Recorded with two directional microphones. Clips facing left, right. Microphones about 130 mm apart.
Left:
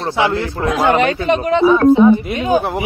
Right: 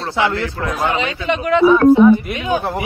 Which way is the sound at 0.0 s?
20° left (ahead or behind).